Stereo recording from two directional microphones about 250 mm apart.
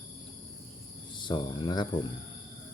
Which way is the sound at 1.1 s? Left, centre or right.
Centre.